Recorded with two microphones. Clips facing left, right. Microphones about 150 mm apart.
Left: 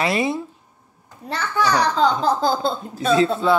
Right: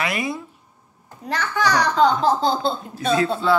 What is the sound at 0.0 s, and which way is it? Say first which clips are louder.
Speech: left 4 dB; 25° left (ahead or behind).